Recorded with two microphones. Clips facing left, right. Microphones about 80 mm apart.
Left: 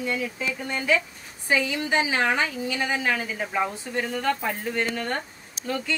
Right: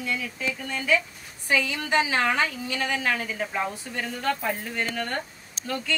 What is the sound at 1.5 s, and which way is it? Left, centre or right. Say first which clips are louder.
A woman's voice: left 1 dB; left.